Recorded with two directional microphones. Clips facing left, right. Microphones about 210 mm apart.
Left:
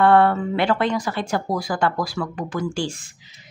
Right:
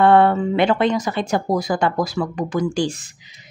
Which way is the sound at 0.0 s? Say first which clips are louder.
Right 2 dB; 20° right (ahead or behind).